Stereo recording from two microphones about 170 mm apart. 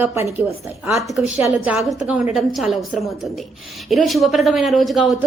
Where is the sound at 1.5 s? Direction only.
5° right (ahead or behind).